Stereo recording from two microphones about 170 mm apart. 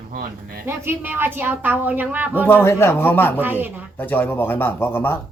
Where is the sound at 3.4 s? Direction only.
10° right (ahead or behind).